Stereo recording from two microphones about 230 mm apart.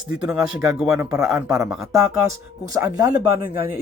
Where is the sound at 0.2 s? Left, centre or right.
Centre.